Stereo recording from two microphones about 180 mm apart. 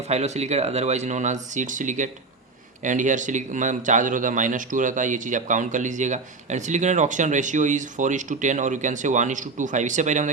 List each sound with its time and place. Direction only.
0.1 s speech: 40° right (ahead or behind)